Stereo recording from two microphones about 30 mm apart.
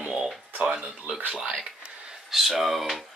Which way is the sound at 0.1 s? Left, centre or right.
Centre.